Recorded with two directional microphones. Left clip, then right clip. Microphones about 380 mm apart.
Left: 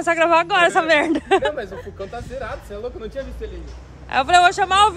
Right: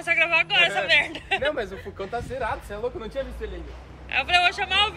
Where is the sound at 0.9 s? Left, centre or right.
Left.